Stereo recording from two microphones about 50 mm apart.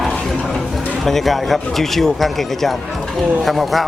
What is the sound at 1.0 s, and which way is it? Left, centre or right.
Speech, centre.